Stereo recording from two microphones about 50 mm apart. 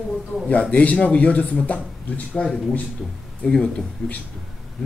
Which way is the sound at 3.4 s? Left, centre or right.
Centre.